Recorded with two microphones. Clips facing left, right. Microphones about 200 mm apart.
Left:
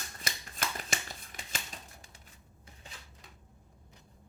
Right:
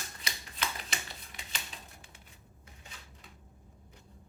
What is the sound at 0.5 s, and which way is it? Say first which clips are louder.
Shuffling cards: left 1 dB; 45° left (ahead or behind).